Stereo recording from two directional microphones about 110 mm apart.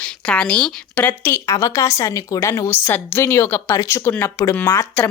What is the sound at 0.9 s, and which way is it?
Speech, 20° left (ahead or behind).